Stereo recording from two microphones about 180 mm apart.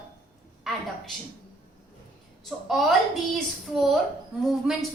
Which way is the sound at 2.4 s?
Centre (ahead or behind).